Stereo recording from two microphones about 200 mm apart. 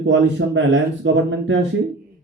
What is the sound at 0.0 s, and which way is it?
Speech, 65° right (ahead or behind).